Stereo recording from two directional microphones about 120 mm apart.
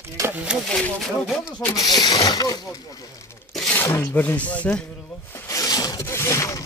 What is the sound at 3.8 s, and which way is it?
Speech, 25° left (ahead or behind).